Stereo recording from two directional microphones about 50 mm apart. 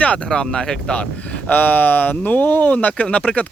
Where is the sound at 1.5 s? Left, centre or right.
Left.